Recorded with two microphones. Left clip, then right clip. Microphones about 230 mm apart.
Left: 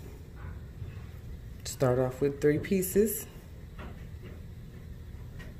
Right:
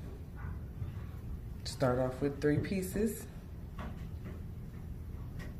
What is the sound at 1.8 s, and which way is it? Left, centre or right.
Speech, left.